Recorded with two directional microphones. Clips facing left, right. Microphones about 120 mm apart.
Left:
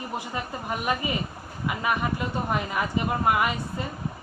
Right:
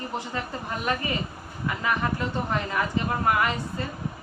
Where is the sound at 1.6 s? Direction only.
15° left (ahead or behind).